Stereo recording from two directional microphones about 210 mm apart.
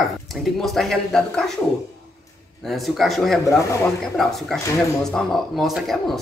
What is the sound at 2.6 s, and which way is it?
Speech, centre (ahead or behind).